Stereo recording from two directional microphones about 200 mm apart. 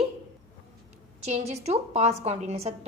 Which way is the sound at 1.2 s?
35° right (ahead or behind).